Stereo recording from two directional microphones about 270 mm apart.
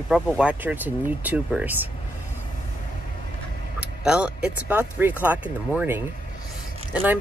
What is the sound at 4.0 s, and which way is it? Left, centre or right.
Speech, centre.